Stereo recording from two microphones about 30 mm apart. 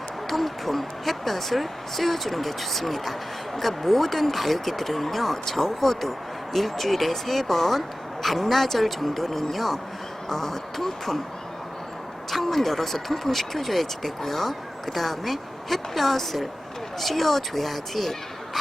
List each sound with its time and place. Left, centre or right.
0.3 s speech: centre
12.3 s speech: centre